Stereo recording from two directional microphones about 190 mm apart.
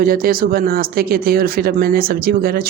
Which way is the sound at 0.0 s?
50° right (ahead or behind).